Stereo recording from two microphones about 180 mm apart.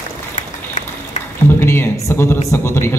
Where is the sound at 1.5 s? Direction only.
15° left (ahead or behind).